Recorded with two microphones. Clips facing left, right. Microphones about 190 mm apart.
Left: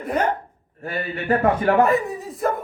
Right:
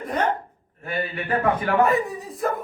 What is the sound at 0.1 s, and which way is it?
Speech, 10° left (ahead or behind).